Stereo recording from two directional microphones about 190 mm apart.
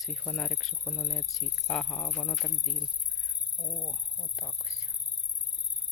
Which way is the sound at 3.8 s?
15° left (ahead or behind).